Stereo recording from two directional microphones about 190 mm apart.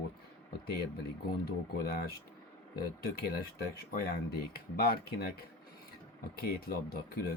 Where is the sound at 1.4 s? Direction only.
55° left (ahead or behind).